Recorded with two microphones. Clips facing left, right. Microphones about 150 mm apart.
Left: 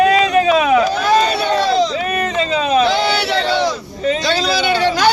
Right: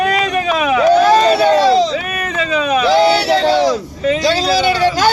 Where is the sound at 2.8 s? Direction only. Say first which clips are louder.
Right 4 dB; 40° right (ahead or behind).